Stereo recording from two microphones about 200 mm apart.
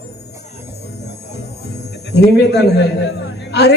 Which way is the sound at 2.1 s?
55° left (ahead or behind).